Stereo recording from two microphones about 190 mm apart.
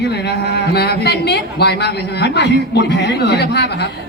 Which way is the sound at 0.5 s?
60° left (ahead or behind).